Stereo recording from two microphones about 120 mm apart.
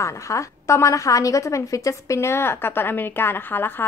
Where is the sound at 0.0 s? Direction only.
25° left (ahead or behind).